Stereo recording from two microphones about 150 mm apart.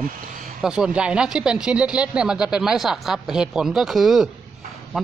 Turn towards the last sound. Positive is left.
turn(degrees=0)  # may be behind; listen again after turning